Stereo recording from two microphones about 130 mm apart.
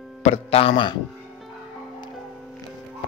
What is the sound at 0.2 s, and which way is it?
Speech, 50° left (ahead or behind).